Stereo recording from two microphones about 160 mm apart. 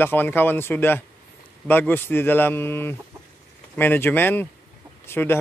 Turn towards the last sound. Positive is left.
turn(degrees=15)  # may be behind; listen again after turning